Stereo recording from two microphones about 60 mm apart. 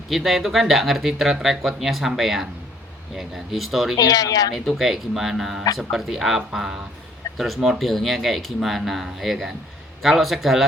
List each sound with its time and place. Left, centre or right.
0.1 s speech: centre
3.9 s speech: left
4.5 s speech: centre